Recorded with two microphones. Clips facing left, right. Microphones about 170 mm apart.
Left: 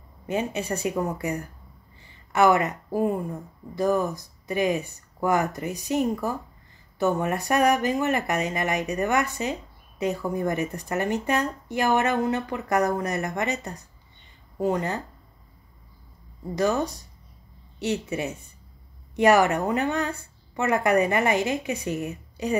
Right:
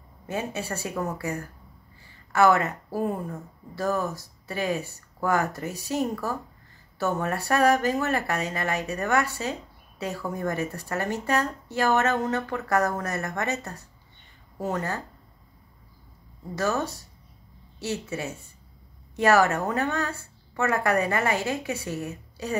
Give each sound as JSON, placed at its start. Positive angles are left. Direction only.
{"t": 0.3, "sound": "speech", "side_deg": 15}
{"t": 16.5, "sound": "speech", "side_deg": 15}